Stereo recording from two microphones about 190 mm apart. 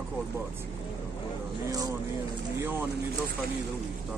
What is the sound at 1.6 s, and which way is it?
Speech, 20° right (ahead or behind).